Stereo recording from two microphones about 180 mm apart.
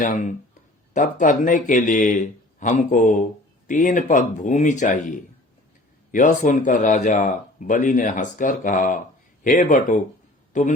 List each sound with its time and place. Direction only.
0.0 s a man's voice: 45° left (ahead or behind)